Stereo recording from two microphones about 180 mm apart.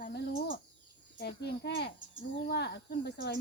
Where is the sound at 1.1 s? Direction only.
60° left (ahead or behind).